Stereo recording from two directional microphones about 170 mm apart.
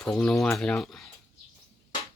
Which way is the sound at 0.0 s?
5° left (ahead or behind).